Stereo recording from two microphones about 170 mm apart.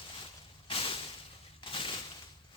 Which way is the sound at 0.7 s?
30° left (ahead or behind).